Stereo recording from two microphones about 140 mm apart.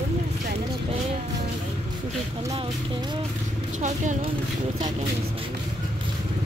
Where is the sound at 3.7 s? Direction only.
60° right (ahead or behind).